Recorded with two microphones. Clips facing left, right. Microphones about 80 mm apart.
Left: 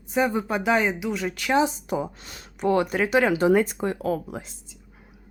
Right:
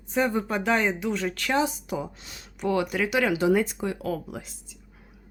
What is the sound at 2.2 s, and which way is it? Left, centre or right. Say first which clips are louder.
Speech: left 4 dB; left.